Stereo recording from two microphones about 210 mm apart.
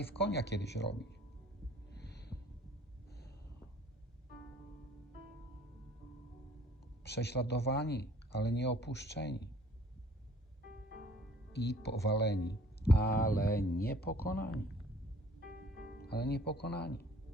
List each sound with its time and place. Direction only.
0.3 s speech: 50° left (ahead or behind)
2.0 s heart sounds: 50° left (ahead or behind)
3.1 s a sound: 50° left (ahead or behind)
7.0 s speech: 50° left (ahead or behind)
11.5 s speech: 50° left (ahead or behind)
16.0 s speech: 50° left (ahead or behind)